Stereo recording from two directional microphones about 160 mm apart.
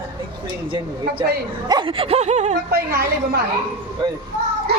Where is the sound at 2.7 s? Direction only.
75° right (ahead or behind).